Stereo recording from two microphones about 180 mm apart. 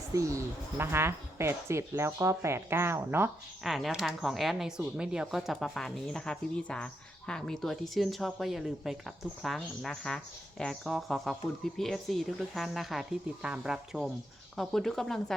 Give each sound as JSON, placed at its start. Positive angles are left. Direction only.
{"t": 0.1, "sound": "speech", "side_deg": -15}
{"t": 3.6, "sound": "speech", "side_deg": 0}